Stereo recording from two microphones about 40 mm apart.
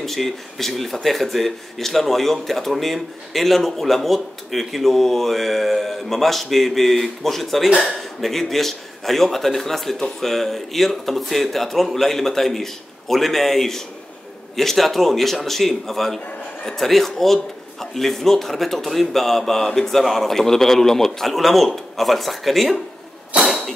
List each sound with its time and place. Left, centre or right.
0.0 s a man's voice: centre
23.4 s cough: centre